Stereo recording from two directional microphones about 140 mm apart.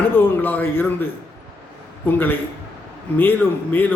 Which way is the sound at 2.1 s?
15° left (ahead or behind).